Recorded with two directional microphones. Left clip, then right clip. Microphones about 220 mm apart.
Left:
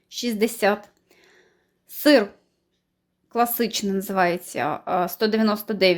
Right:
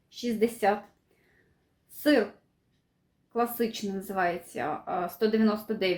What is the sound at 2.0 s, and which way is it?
Speech, 50° left (ahead or behind).